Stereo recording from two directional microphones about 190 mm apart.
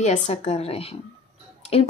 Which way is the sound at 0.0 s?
35° left (ahead or behind).